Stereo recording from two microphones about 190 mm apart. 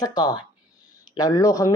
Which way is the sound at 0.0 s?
20° left (ahead or behind).